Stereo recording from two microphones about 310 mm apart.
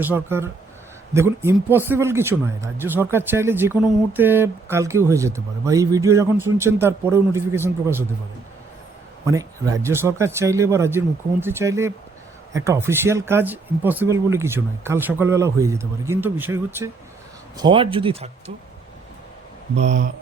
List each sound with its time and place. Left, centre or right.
0.0 s speech: centre
9.2 s speech: centre